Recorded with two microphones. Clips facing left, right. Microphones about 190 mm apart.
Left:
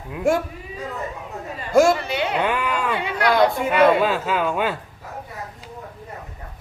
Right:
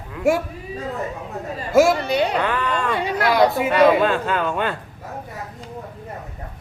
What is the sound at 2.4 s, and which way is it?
Speech, 15° left (ahead or behind).